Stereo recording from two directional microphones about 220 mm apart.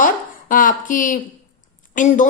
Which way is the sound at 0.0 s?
40° left (ahead or behind).